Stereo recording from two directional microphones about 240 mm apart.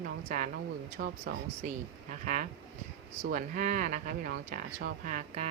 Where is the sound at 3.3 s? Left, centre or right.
Right.